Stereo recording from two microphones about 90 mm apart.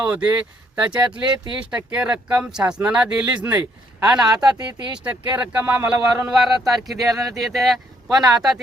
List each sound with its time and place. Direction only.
0.0 s speech: 10° right (ahead or behind)
6.3 s speech: centre (ahead or behind)